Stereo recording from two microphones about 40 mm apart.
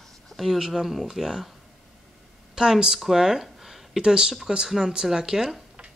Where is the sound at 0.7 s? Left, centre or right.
Centre.